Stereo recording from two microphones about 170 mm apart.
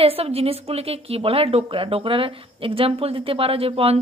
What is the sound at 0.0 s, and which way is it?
A woman's voice, 35° right (ahead or behind).